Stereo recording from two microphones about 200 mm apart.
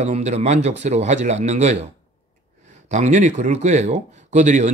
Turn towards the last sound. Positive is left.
turn(degrees=-35)  # may be behind; listen again after turning